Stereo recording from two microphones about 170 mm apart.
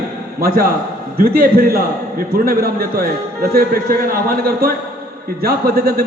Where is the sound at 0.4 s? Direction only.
65° right (ahead or behind).